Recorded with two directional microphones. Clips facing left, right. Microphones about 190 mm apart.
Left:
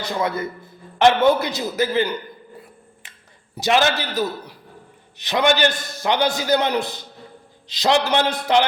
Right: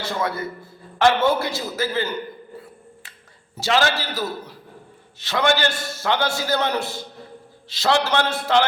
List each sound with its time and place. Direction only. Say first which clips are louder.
0.0 s a man's voice: left 2 dB; 20° left (ahead or behind)
3.5 s a man's voice: left 2 dB; 20° left (ahead or behind)